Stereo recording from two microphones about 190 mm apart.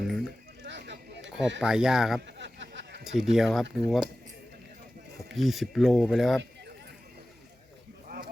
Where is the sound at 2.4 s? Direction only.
70° right (ahead or behind).